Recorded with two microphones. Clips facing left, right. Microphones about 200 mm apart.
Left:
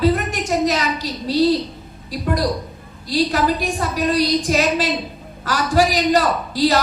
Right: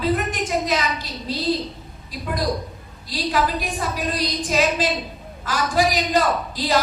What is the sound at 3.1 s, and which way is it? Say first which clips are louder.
Speech: left 5 dB; 45° left (ahead or behind).